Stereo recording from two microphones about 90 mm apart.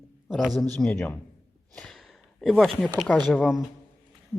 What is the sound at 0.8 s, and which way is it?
Speech, 15° left (ahead or behind).